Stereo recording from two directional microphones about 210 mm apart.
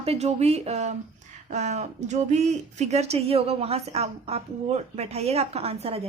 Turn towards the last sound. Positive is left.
turn(degrees=-30)  # may be behind; listen again after turning